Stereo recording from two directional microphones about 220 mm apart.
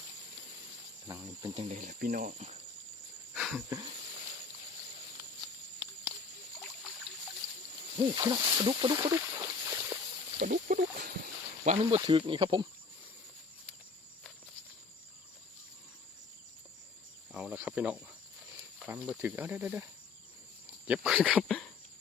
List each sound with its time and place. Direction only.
1.0 s speech: 15° right (ahead or behind)
1.5 s cricket: 30° right (ahead or behind)
3.3 s wheeze: centre (ahead or behind)
7.9 s speech: 20° right (ahead or behind)
9.1 s a sound: 15° right (ahead or behind)
10.4 s cricket: 40° right (ahead or behind)
11.6 s speech: 30° right (ahead or behind)
17.3 s cricket: 5° right (ahead or behind)
18.9 s speech: 5° right (ahead or behind)